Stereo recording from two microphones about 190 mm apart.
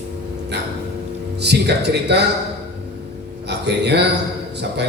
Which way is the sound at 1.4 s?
60° right (ahead or behind).